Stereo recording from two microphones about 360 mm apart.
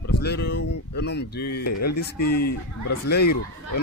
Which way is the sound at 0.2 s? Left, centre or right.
Left.